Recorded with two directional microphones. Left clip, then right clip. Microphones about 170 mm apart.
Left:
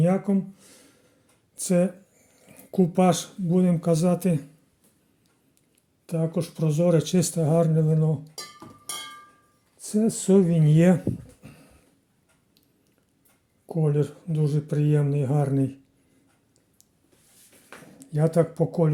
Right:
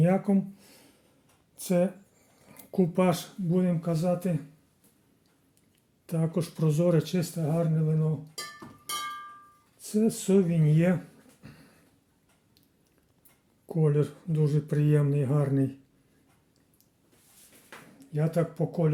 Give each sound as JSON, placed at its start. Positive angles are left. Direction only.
{"t": 0.0, "sound": "speech", "side_deg": 10}
{"t": 3.8, "sound": "speech", "side_deg": 50}
{"t": 6.1, "sound": "speech", "side_deg": 5}
{"t": 6.9, "sound": "speech", "side_deg": 30}
{"t": 7.2, "sound": "speech", "side_deg": 45}
{"t": 9.8, "sound": "speech", "side_deg": 25}
{"t": 11.4, "sound": "a sound", "side_deg": 15}
{"t": 13.7, "sound": "speech", "side_deg": 5}
{"t": 17.9, "sound": "speech", "side_deg": 35}